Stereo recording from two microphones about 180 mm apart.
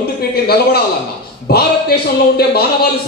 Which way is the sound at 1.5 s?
60° left (ahead or behind).